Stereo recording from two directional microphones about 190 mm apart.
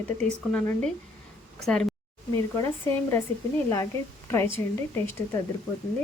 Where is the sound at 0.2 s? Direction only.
5° left (ahead or behind).